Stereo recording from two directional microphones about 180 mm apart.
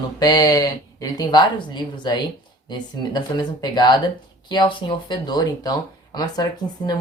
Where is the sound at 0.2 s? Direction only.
20° left (ahead or behind).